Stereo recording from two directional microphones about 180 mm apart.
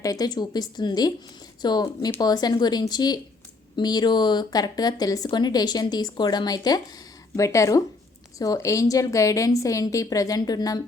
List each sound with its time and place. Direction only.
0.0 s a woman's voice: 20° left (ahead or behind)